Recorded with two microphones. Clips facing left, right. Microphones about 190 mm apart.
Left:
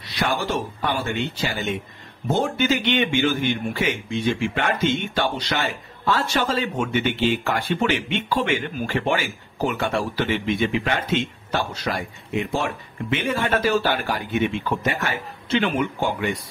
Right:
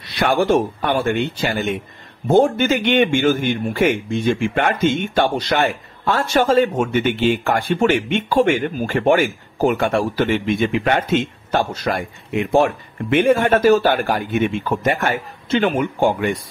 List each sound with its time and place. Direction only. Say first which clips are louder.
0.1 s a man's voice: right 8 dB; 55° right (ahead or behind)